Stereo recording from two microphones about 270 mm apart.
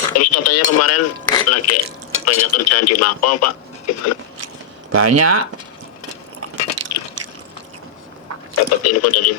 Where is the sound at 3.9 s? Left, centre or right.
Left.